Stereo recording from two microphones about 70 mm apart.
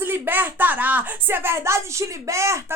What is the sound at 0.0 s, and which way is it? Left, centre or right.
A woman's voice, right.